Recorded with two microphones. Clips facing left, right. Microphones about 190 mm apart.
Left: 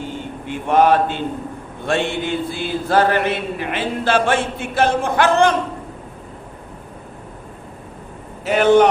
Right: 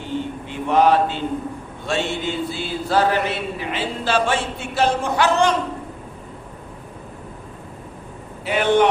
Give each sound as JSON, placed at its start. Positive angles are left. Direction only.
{"t": 0.4, "sound": "a sound", "side_deg": 50}
{"t": 1.9, "sound": "speech", "side_deg": 55}
{"t": 8.4, "sound": "speech", "side_deg": 45}